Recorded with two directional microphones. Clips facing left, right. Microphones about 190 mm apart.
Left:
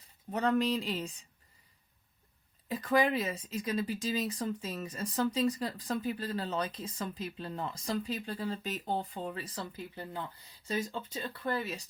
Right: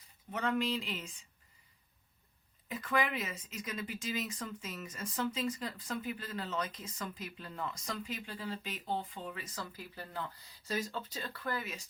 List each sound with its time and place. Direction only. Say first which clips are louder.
0.3 s speech: left 5 dB; 35° left (ahead or behind)
2.6 s speech: left 6 dB; 35° left (ahead or behind)